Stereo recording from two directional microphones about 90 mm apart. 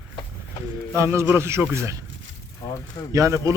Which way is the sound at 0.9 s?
30° right (ahead or behind).